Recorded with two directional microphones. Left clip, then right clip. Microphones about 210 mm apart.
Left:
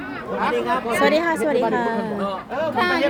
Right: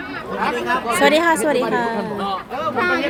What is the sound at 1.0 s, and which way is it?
Speech, 15° right (ahead or behind).